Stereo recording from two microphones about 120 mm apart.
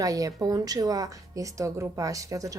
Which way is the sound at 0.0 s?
30° right (ahead or behind).